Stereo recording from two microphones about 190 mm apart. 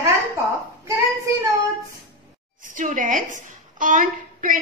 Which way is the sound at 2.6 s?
45° right (ahead or behind).